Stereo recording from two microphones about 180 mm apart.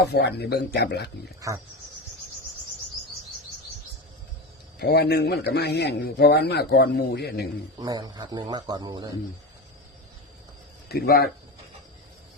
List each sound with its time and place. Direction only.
0.0 s a man's voice: 65° left (ahead or behind)
1.4 s speech: 15° right (ahead or behind)
4.8 s a man's voice: 65° left (ahead or behind)
7.8 s speech: 20° right (ahead or behind)
10.8 s speech: 60° left (ahead or behind)